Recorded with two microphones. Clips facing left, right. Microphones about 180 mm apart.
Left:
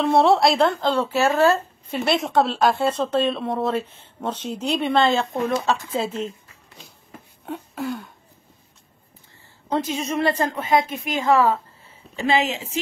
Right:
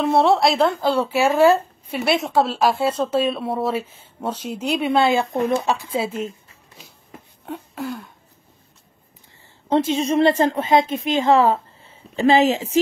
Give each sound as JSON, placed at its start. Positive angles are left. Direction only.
{"t": 0.0, "sound": "speech", "side_deg": 0}
{"t": 7.4, "sound": "a sound", "side_deg": 0}
{"t": 9.7, "sound": "a woman's voice", "side_deg": -25}
{"t": 12.2, "sound": "a woman's voice", "side_deg": -35}